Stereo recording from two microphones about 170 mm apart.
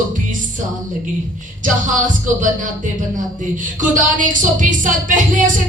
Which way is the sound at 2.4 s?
50° right (ahead or behind).